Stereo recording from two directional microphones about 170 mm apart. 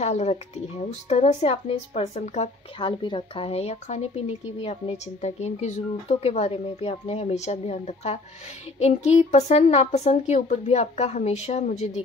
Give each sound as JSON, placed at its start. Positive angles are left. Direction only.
{"t": 0.0, "sound": "speech", "side_deg": 40}